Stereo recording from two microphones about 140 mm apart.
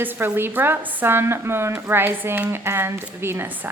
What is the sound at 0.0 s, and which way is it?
Speech, 15° right (ahead or behind).